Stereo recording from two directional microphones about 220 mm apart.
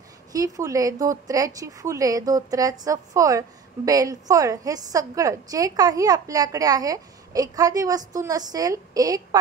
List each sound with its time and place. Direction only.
0.3 s speech: 15° right (ahead or behind)